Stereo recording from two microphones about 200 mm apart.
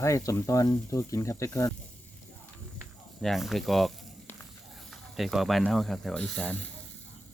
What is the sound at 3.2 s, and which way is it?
Speech, centre (ahead or behind).